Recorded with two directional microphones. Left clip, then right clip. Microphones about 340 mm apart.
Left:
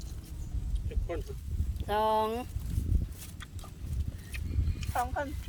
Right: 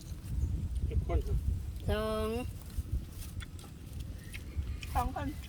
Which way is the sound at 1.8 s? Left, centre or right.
Centre.